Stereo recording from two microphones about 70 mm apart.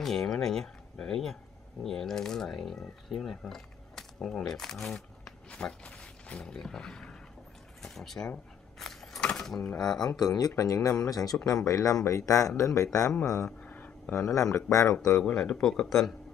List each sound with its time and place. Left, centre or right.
0.0 s speech: centre
8.7 s a sound: centre
9.8 s speech: centre
10.0 s speech: left
10.5 s speech: left
13.5 s a sound: centre
14.1 s speech: left
15.3 s speech: centre